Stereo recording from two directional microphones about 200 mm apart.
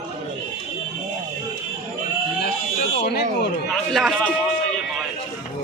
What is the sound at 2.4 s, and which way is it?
Speech, 50° left (ahead or behind).